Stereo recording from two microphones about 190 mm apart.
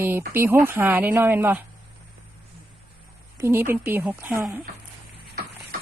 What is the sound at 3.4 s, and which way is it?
Speech, 10° right (ahead or behind).